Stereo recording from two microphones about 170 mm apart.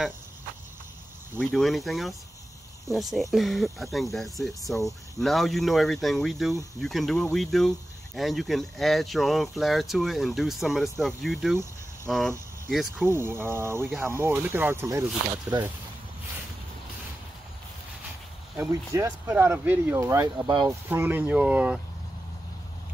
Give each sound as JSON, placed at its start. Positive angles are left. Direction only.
{"t": 1.4, "sound": "speech", "side_deg": 0}
{"t": 13.0, "sound": "speech", "side_deg": -15}
{"t": 18.6, "sound": "speech", "side_deg": -15}
{"t": 20.9, "sound": "speech", "side_deg": -10}